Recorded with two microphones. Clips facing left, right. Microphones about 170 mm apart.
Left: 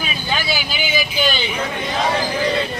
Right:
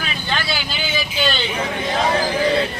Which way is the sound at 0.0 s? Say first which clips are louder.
Left 1 dB; 15° left (ahead or behind).